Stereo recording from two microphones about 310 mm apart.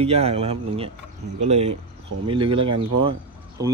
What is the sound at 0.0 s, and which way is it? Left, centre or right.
Speech, centre.